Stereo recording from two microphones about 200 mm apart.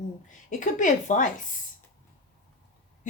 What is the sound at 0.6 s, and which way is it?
Speech, 40° left (ahead or behind).